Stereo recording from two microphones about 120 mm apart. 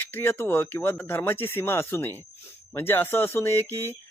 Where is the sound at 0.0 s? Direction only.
20° left (ahead or behind).